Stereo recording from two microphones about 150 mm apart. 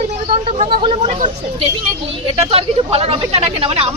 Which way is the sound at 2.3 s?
40° right (ahead or behind).